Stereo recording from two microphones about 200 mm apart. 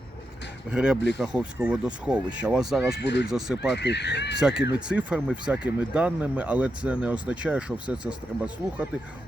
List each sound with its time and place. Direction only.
0.7 s speech: 5° right (ahead or behind)
3.0 s speech: 60° left (ahead or behind)
3.2 s speech: 5° right (ahead or behind)
3.8 s speech: 60° left (ahead or behind)
4.4 s speech: 5° right (ahead or behind)